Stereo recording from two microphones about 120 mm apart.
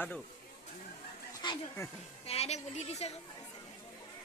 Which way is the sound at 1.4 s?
40° left (ahead or behind).